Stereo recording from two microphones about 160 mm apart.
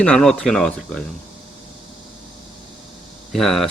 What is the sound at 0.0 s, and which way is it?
Speech, 5° left (ahead or behind).